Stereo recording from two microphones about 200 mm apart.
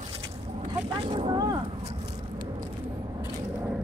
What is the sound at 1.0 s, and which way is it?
Vehicle, 25° right (ahead or behind).